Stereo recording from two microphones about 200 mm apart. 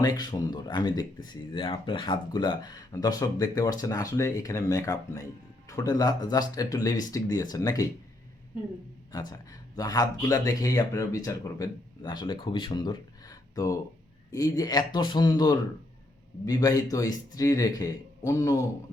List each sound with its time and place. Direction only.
0.0 s speech: 20° left (ahead or behind)
9.1 s speech: 20° left (ahead or behind)